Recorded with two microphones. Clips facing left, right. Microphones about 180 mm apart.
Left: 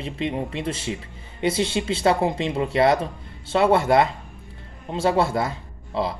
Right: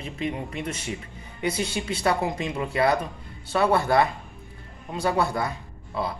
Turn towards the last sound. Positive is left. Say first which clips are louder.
# left 4 dB
turn(degrees=25)  # may be behind; listen again after turning